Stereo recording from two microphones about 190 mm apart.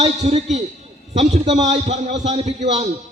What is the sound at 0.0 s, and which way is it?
A man's voice, 35° right (ahead or behind).